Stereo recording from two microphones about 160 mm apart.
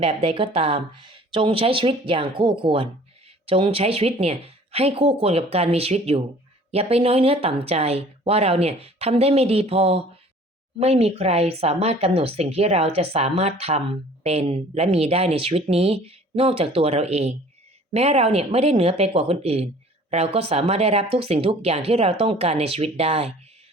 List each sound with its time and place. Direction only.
0.0 s speech: 35° right (ahead or behind)